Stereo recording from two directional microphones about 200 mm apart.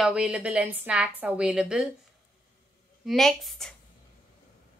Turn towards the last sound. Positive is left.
turn(degrees=0)  # may be behind; listen again after turning